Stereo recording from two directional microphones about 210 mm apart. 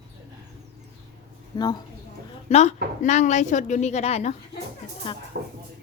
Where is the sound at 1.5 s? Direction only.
20° left (ahead or behind).